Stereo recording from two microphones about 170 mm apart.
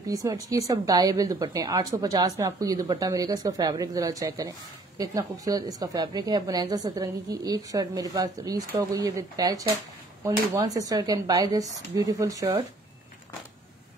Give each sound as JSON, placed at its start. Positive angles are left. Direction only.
{"t": 0.0, "sound": "speech", "side_deg": -20}